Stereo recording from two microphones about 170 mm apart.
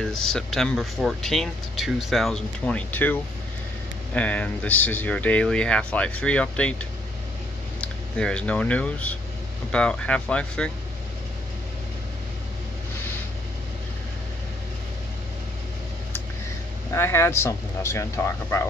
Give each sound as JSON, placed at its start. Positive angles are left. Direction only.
{"t": 0.0, "sound": "speech", "side_deg": 5}
{"t": 7.8, "sound": "speech", "side_deg": 5}
{"t": 16.9, "sound": "speech", "side_deg": 15}